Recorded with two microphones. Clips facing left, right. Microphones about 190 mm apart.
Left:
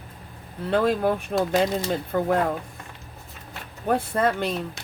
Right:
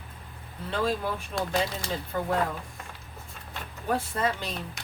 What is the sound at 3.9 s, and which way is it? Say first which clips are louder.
Speech: left 6 dB; 60° left (ahead or behind).